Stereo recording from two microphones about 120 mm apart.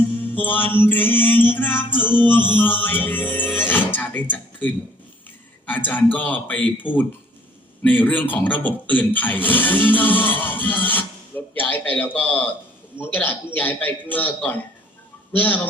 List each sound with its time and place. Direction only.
0.2 s a man's voice: 15° left (ahead or behind)